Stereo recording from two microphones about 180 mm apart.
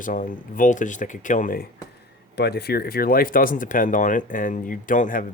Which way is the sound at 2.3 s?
65° left (ahead or behind).